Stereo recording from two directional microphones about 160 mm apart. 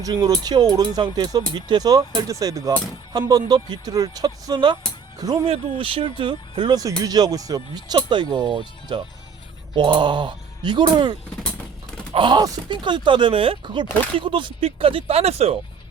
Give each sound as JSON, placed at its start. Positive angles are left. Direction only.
{"t": 0.0, "sound": "speech", "side_deg": -25}